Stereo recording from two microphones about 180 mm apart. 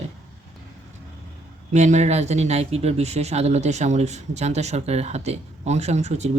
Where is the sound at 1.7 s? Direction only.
40° right (ahead or behind).